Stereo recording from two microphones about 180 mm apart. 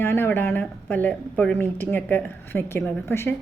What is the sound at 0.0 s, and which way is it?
A woman's voice, 10° left (ahead or behind).